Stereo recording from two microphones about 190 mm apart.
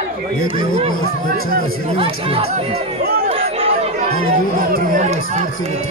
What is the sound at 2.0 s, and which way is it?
Speech, 30° right (ahead or behind).